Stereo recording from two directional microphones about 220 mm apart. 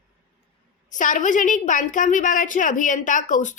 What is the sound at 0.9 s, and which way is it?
A woman's voice, 35° left (ahead or behind).